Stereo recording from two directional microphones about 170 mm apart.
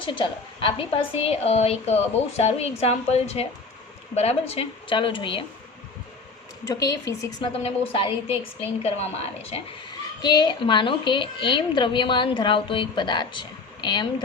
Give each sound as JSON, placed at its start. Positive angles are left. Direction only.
{"t": 0.0, "sound": "a woman's voice", "side_deg": 30}
{"t": 6.7, "sound": "a woman's voice", "side_deg": 20}
{"t": 7.4, "sound": "a woman's voice", "side_deg": 30}
{"t": 10.2, "sound": "a woman's voice", "side_deg": 25}